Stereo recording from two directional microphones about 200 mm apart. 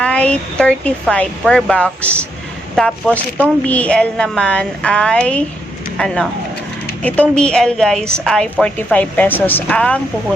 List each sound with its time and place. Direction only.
0.0 s a woman's voice: 5° left (ahead or behind)